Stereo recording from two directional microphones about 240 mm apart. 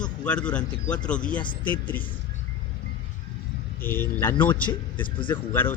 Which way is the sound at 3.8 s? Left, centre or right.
Centre.